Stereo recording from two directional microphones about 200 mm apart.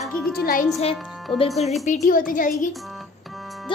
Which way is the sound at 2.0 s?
45° left (ahead or behind).